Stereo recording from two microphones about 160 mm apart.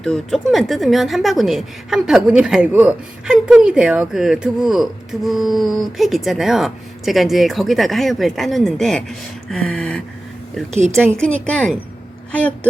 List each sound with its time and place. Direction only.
0.0 s a woman's voice: 5° left (ahead or behind)
10.7 s a woman's voice: 45° right (ahead or behind)
11.2 s a woman's voice: 5° left (ahead or behind)